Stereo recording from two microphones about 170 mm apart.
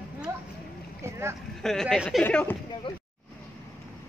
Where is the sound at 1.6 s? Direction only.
5° left (ahead or behind).